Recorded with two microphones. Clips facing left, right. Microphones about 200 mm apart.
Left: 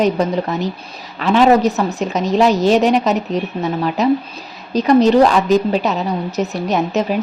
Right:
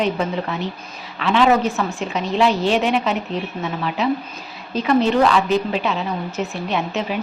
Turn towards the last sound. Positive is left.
turn(degrees=40)  # may be behind; listen again after turning